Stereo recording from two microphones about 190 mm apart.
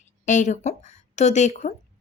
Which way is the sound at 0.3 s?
40° left (ahead or behind).